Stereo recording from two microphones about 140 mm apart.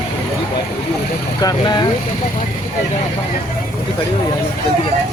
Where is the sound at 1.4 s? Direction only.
30° left (ahead or behind).